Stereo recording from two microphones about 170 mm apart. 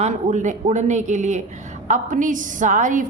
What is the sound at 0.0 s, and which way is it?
A woman's voice, 45° right (ahead or behind).